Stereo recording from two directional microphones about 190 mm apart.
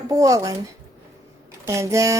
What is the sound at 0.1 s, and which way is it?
Speech, 20° right (ahead or behind).